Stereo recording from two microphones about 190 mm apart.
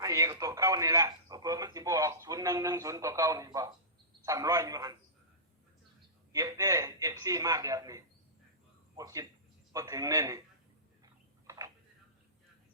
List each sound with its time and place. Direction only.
0.0 s a man's voice: 15° right (ahead or behind)
6.3 s speech: 15° right (ahead or behind)
11.0 s a sound: 20° right (ahead or behind)